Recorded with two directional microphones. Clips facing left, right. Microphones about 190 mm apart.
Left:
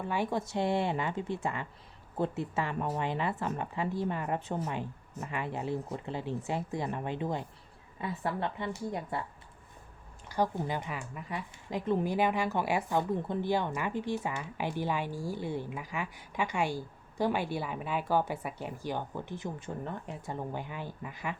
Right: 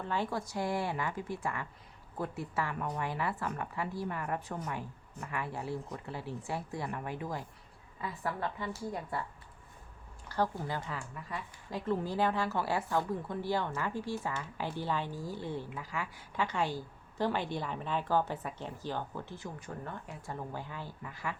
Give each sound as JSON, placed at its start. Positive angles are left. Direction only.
{"t": 0.0, "sound": "speech", "side_deg": 15}
{"t": 10.2, "sound": "a woman's voice", "side_deg": 15}